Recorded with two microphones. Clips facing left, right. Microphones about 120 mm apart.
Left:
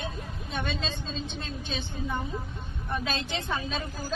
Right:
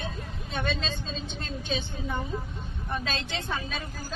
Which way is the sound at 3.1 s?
20° left (ahead or behind).